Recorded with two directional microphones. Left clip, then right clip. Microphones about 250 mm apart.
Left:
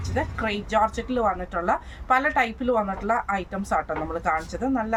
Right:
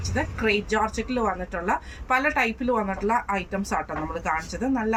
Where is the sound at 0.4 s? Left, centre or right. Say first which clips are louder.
Even; centre.